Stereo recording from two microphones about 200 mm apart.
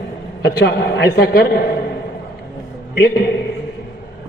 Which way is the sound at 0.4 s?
55° left (ahead or behind).